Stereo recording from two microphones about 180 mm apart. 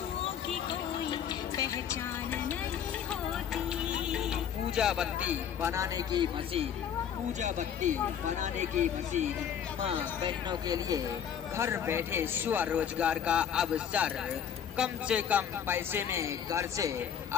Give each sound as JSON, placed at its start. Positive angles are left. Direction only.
{"t": 0.7, "sound": "music", "side_deg": 25}
{"t": 3.1, "sound": "music", "side_deg": -5}
{"t": 7.3, "sound": "speech", "side_deg": -40}
{"t": 9.8, "sound": "a man's voice", "side_deg": -25}